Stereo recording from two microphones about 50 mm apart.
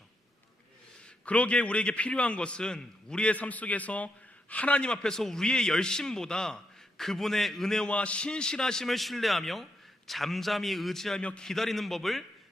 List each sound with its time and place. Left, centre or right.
1.2 s a man's voice: left; by 7.9 s centre
7.9 s a man's voice: left; by 11.2 s centre
11.2 s a man's voice: left
11.4 s a man's voice: centre